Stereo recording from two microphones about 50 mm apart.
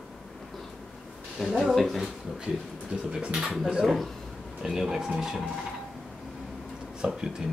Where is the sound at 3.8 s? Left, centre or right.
Centre.